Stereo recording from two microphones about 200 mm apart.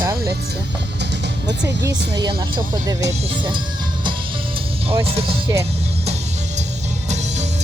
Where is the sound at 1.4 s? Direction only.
15° right (ahead or behind).